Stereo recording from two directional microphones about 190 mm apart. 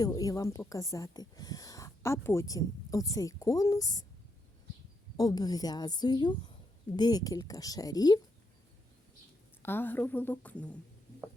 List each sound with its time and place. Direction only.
0.0 s speech: 20° left (ahead or behind)
5.1 s a woman's voice: 20° left (ahead or behind)
9.6 s speech: 10° left (ahead or behind)